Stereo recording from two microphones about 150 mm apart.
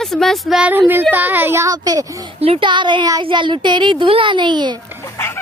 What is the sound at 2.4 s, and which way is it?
Speech, 35° right (ahead or behind).